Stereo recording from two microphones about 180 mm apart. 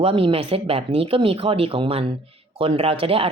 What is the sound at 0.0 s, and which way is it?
Speech, 30° right (ahead or behind).